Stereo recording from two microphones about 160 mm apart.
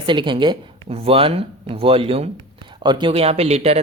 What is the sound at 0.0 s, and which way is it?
Speech, 30° right (ahead or behind).